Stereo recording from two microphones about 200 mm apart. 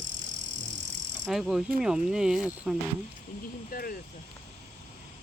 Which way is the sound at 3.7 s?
45° left (ahead or behind).